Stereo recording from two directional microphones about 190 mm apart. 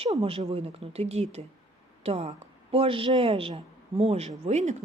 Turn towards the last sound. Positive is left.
turn(degrees=-40)  # may be behind; listen again after turning